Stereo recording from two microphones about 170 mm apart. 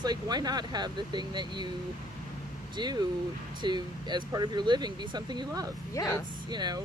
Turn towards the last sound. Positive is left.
turn(degrees=-25)  # may be behind; listen again after turning